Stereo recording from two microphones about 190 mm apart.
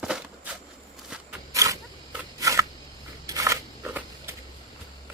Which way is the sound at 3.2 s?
15° right (ahead or behind).